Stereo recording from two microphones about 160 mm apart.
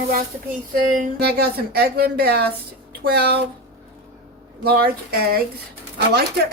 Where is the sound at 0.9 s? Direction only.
70° right (ahead or behind).